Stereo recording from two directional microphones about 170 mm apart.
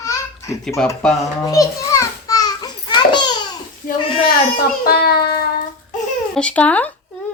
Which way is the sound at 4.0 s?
30° left (ahead or behind).